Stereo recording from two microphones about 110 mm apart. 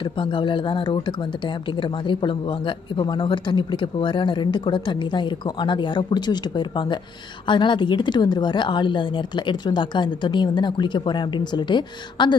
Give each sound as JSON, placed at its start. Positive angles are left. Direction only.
{"t": 0.0, "sound": "speech", "side_deg": 45}